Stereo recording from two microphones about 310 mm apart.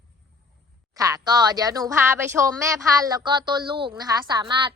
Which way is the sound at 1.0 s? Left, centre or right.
Centre.